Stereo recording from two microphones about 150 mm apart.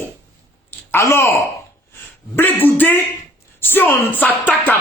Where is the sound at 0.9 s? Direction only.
15° left (ahead or behind).